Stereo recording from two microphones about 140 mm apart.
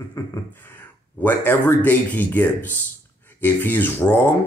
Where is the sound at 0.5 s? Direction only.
15° left (ahead or behind).